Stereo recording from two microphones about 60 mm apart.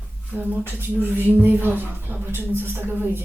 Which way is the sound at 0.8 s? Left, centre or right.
Right.